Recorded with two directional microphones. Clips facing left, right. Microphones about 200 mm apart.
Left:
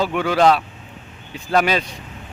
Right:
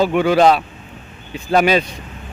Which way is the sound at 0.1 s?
15° right (ahead or behind).